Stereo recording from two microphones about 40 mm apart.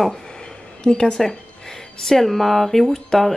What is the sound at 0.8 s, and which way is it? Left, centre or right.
Speech, centre.